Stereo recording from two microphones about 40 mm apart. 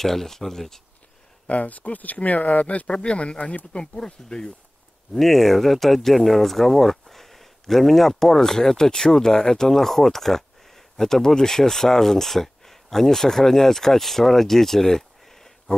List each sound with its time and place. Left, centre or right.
0.0 s speech: centre
1.5 s speech: left
3.7 s speech: centre
5.1 s speech: centre